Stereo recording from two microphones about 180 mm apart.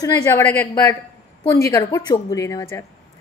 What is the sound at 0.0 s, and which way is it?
A woman's voice, 15° left (ahead or behind).